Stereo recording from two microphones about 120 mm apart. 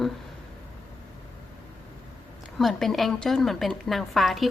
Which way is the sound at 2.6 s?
Centre (ahead or behind).